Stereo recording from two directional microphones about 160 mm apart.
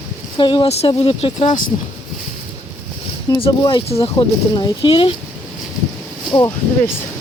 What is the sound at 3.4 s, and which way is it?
Speech, 30° left (ahead or behind).